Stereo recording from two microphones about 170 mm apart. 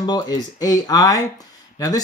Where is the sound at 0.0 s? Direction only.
25° left (ahead or behind).